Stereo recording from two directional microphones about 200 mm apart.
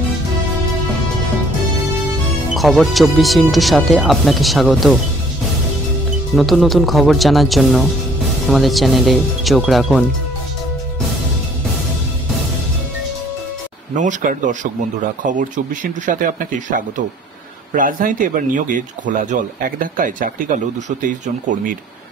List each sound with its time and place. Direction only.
2.5 s speech: centre (ahead or behind)
6.3 s speech: centre (ahead or behind)
13.9 s speech: 40° right (ahead or behind)